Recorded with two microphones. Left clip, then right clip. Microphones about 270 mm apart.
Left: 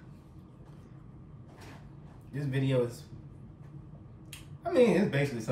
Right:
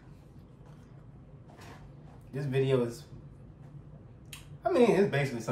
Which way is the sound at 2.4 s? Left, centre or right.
Centre.